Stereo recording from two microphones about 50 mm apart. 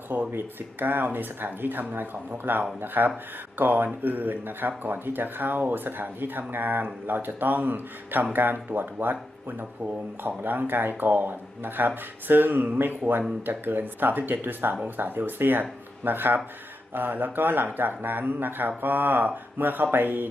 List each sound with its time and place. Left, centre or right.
0.1 s speech: right